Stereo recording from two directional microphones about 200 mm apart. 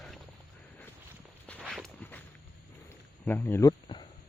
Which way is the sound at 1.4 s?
5° left (ahead or behind).